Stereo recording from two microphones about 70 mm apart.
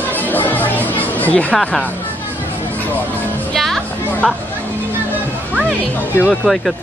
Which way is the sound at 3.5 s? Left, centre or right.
Centre.